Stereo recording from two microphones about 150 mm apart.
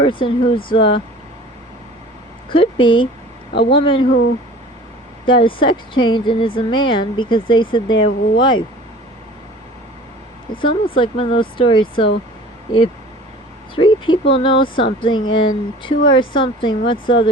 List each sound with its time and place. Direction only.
0.0 s speech: 35° left (ahead or behind)
2.5 s speech: 35° left (ahead or behind)
5.2 s speech: 35° left (ahead or behind)
10.9 s speech: 35° left (ahead or behind)
13.7 s speech: 35° left (ahead or behind)